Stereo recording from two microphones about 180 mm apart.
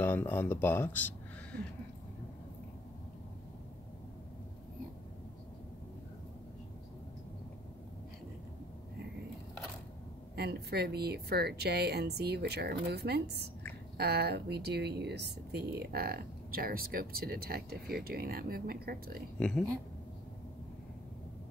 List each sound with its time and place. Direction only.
0.0 s speech: 10° left (ahead or behind)
10.3 s speech: 60° right (ahead or behind)